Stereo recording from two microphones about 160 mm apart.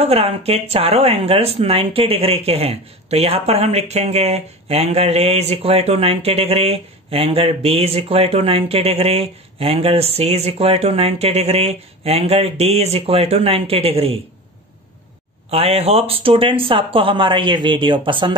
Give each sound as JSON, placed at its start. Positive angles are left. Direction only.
{"t": 0.0, "sound": "speech", "side_deg": -40}
{"t": 15.5, "sound": "speech", "side_deg": -40}